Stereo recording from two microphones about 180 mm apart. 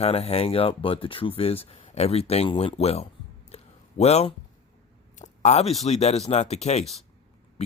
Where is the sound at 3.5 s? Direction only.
35° left (ahead or behind).